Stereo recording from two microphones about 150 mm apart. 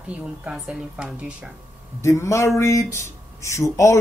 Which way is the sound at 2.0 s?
20° left (ahead or behind).